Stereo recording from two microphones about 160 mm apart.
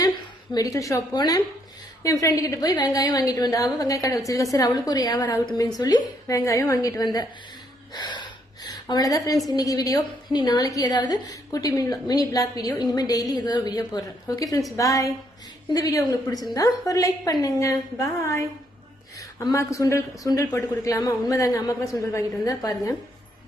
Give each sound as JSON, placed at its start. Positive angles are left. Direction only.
{"t": 0.5, "sound": "a woman's voice", "side_deg": 20}
{"t": 7.9, "sound": "a sound", "side_deg": 25}
{"t": 9.5, "sound": "a woman's voice", "side_deg": 20}